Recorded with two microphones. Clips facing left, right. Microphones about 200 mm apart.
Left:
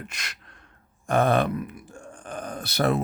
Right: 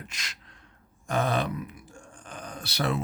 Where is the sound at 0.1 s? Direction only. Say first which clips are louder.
Left 3 dB; 55° left (ahead or behind).